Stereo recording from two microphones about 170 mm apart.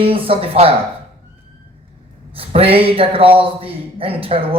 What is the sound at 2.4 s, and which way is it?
A man's voice, 35° right (ahead or behind).